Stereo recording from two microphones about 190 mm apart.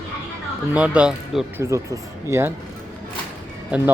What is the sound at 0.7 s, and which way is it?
Speech, 5° right (ahead or behind).